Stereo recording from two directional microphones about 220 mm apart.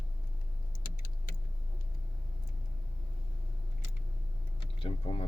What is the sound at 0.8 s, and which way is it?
Vehicle, 40° left (ahead or behind).